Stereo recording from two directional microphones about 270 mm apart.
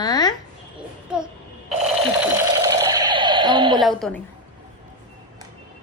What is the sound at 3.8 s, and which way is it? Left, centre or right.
Speech, centre.